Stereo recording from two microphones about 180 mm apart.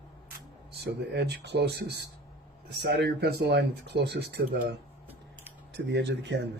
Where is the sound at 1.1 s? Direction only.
70° right (ahead or behind).